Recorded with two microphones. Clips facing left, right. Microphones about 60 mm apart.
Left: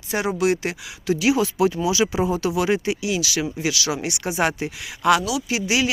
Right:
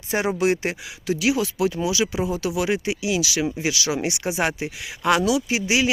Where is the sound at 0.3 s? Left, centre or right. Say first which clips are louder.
Even; right.